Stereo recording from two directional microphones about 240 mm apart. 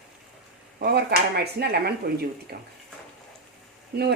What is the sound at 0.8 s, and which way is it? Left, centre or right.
Speech, right.